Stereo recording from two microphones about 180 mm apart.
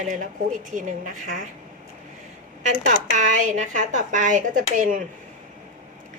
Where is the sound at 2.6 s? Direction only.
45° right (ahead or behind).